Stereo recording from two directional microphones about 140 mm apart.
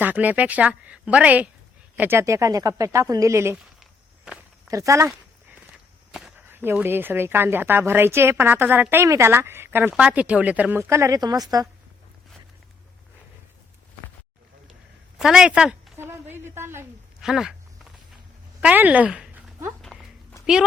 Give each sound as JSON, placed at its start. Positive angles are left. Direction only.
{"t": 0.0, "sound": "a woman's voice", "side_deg": -10}
{"t": 4.7, "sound": "speech", "side_deg": -20}
{"t": 5.7, "sound": "walk", "side_deg": -5}
{"t": 6.5, "sound": "a woman's voice", "side_deg": -15}
{"t": 15.2, "sound": "a woman's voice", "side_deg": -5}
{"t": 16.0, "sound": "a sound", "side_deg": -15}
{"t": 17.2, "sound": "speech", "side_deg": -5}
{"t": 18.6, "sound": "speech", "side_deg": -10}